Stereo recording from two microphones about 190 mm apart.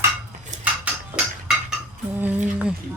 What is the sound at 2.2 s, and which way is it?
Speech, 10° right (ahead or behind).